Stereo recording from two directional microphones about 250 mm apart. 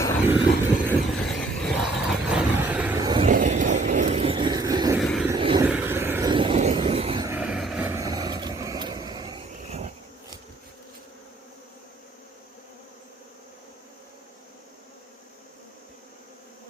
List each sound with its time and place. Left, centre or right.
0.9 s vehicle: centre
3.2 s vehicle: right; by 4.9 s centre
4.9 s vehicle: centre
5.3 s vehicle: centre
5.6 s vehicle: centre; by 10.3 s right